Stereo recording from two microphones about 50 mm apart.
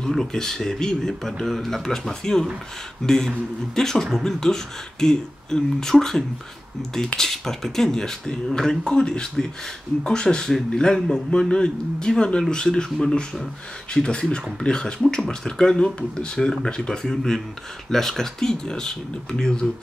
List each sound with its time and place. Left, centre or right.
0.1 s speech: centre